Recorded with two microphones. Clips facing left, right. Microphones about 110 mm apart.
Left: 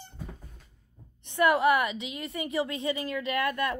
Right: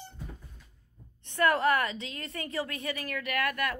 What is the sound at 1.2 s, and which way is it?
A woman's voice, 15° left (ahead or behind).